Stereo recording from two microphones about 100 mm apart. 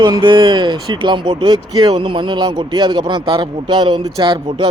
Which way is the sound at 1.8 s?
55° right (ahead or behind).